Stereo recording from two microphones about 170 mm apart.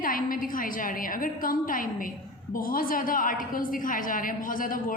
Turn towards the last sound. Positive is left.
turn(degrees=55)  # may be behind; listen again after turning